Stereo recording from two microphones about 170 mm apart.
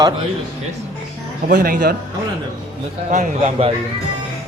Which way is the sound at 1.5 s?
65° right (ahead or behind).